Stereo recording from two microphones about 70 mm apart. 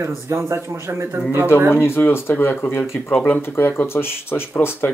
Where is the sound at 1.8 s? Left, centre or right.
Left.